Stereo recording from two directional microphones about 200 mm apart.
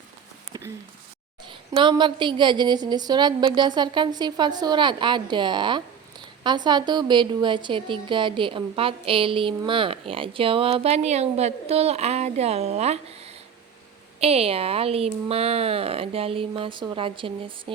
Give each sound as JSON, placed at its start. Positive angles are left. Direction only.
{"t": 1.5, "sound": "a woman's voice", "side_deg": -25}